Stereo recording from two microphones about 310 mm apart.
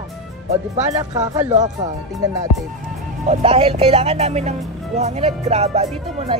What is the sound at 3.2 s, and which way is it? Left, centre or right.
Speech, centre.